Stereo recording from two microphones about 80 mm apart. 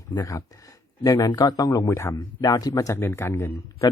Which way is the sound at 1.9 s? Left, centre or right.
Left.